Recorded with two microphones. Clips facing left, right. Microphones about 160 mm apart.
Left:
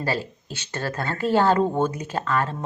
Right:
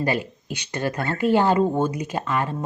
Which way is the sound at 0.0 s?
15° right (ahead or behind).